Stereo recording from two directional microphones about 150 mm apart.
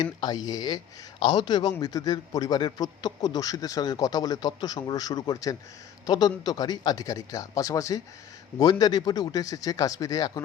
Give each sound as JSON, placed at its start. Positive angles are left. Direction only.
{"t": 0.0, "sound": "a man's voice", "side_deg": 25}